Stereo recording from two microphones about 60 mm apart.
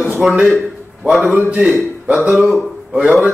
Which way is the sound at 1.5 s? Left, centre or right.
Right.